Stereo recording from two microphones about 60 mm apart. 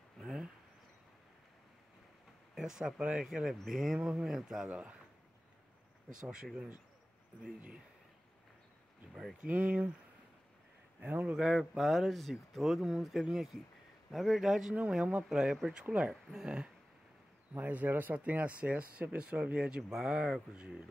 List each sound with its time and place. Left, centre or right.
0.2 s a sound: centre
2.5 s speech: centre
4.6 s speech: right
6.2 s speech: centre
9.5 s speech: right
11.0 s speech: right
11.3 s speech: centre
14.7 s speech: centre
15.8 s speech: centre
17.6 s speech: right; by 20.8 s centre